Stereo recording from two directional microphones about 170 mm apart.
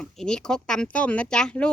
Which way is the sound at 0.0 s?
5° left (ahead or behind).